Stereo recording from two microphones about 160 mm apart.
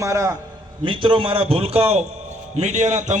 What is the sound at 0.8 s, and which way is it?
A man's voice, 30° right (ahead or behind).